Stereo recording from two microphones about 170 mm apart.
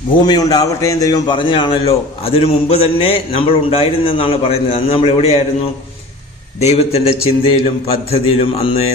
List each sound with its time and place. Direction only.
0.2 s a man's voice: 25° left (ahead or behind)
6.6 s a man's voice: 40° left (ahead or behind)